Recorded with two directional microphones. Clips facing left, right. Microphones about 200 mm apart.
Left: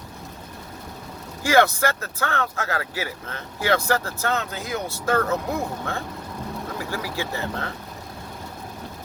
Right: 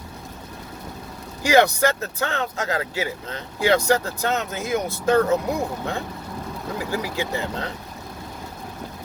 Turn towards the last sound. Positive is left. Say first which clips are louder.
# right 2 dB
turn(degrees=-20)  # may be behind; listen again after turning